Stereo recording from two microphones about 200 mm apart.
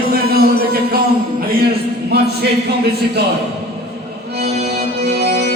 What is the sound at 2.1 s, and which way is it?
Speech, 55° right (ahead or behind).